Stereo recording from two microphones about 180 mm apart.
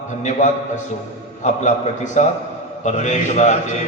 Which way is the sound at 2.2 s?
40° left (ahead or behind).